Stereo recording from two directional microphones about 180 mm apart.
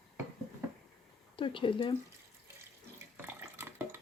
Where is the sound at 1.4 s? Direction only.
30° left (ahead or behind).